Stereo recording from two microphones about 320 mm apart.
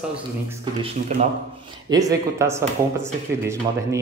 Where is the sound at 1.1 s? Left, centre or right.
Right.